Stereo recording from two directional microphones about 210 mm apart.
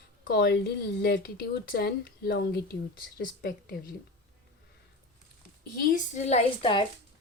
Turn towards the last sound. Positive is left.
turn(degrees=25)  # may be behind; listen again after turning